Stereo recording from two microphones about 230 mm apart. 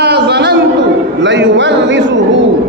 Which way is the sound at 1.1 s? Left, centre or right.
Right.